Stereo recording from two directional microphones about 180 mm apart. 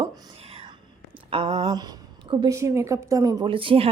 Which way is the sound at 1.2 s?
35° right (ahead or behind).